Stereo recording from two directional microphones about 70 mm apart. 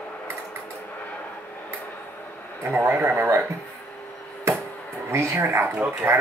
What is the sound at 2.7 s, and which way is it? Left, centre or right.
Speech, right.